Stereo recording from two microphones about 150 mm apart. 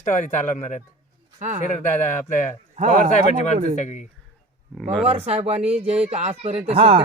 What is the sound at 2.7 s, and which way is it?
Speech, 60° right (ahead or behind).